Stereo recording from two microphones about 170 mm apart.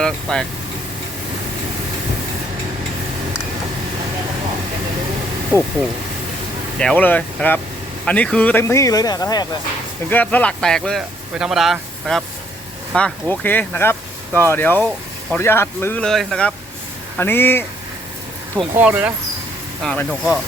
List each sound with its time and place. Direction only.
0.0 s speech: 5° left (ahead or behind)
6.7 s speech: 5° left (ahead or behind); by 9.5 s 20° left (ahead or behind)
10.1 s speech: 10° left (ahead or behind)
18.8 s speech: 10° right (ahead or behind)
19.8 s speech: 5° left (ahead or behind)